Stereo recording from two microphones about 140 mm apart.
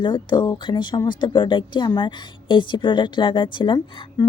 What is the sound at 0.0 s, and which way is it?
Speech, 35° left (ahead or behind).